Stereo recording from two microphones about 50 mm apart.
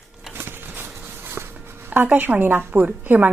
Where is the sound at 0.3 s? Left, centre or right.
Right.